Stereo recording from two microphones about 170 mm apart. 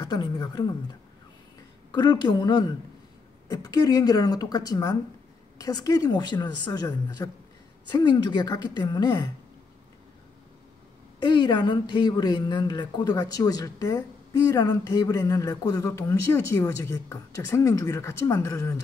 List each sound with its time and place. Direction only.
0.0 s speech: 25° left (ahead or behind)
11.1 s speech: 30° left (ahead or behind)